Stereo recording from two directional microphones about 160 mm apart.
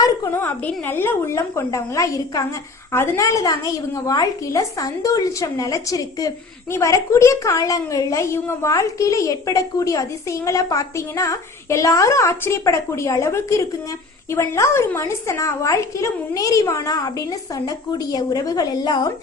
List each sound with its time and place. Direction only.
0.0 s a woman's voice: 15° left (ahead or behind)